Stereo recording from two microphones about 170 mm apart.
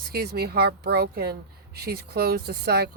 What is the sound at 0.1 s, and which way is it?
A woman's voice, 65° right (ahead or behind).